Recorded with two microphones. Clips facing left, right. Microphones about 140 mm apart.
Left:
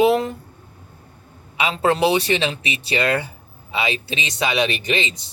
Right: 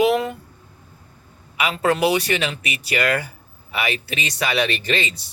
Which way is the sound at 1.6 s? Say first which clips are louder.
Left 1 dB; 25° left (ahead or behind).